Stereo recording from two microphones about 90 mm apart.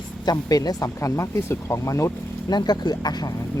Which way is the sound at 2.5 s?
50° left (ahead or behind).